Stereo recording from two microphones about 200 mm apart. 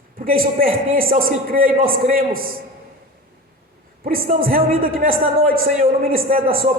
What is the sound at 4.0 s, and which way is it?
A man's voice, 45° right (ahead or behind).